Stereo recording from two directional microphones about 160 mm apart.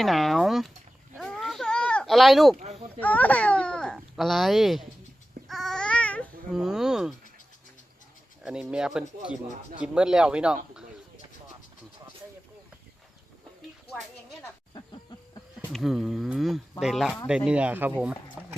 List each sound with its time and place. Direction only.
0.0 s speech: centre (ahead or behind)
1.1 s a sound: centre (ahead or behind)
2.6 s a sound: 45° right (ahead or behind)
3.0 s a child's voice: 10° left (ahead or behind)
5.5 s babbling: centre (ahead or behind)
6.5 s speech: 5° right (ahead or behind)
8.7 s speech: 5° right (ahead or behind)
15.7 s speech: centre (ahead or behind)
18.4 s a sound: 5° right (ahead or behind)